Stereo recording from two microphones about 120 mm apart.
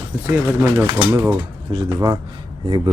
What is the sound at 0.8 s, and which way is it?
Speech, 30° right (ahead or behind).